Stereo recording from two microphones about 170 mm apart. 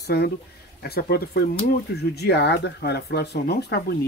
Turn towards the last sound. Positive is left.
turn(degrees=70)  # may be behind; listen again after turning